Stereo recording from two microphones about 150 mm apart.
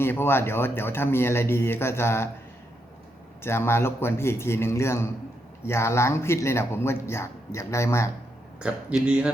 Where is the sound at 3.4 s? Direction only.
15° left (ahead or behind).